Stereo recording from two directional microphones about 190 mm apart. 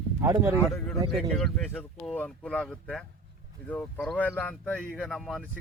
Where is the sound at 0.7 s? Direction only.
5° left (ahead or behind).